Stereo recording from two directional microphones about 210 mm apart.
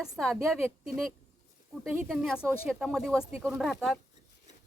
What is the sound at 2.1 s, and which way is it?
Speech, centre (ahead or behind).